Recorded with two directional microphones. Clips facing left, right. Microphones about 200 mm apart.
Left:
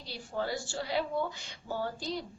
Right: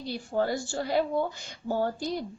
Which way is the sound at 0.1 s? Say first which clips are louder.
Right 6 dB; 50° right (ahead or behind).